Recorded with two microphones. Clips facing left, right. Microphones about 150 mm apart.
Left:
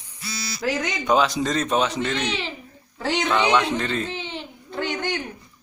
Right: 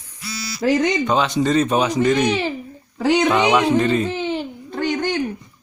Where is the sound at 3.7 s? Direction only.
10° right (ahead or behind).